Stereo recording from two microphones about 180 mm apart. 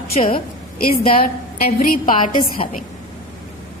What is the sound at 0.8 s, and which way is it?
A woman's voice, 55° left (ahead or behind).